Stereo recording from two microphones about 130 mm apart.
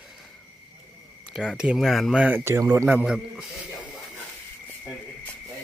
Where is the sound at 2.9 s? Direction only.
15° right (ahead or behind).